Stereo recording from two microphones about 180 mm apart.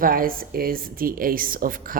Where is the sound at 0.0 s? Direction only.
50° right (ahead or behind).